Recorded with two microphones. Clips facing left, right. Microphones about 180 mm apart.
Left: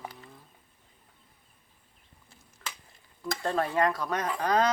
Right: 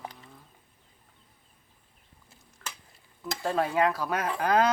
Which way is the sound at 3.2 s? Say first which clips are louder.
Right 1 dB; 5° right (ahead or behind).